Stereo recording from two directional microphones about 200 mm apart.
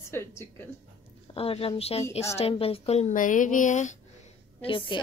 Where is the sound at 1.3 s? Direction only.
30° left (ahead or behind).